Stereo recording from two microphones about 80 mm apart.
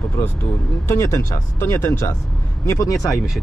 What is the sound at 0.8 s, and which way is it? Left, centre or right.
Speech, left.